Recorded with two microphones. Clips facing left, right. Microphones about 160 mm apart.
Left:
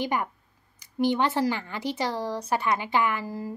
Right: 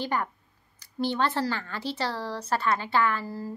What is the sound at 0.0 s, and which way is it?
Speech, 15° left (ahead or behind).